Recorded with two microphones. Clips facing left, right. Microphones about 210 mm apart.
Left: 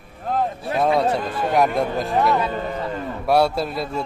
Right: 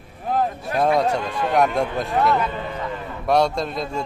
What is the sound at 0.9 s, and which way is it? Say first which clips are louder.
A man's voice: even; 5° left (ahead or behind).